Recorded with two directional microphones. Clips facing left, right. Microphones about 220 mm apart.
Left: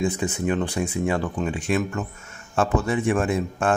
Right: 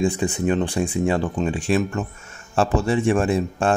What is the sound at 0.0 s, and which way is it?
Speech, 30° right (ahead or behind).